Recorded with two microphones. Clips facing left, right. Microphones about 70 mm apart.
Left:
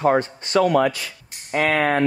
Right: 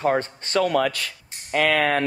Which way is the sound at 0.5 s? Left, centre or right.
Left.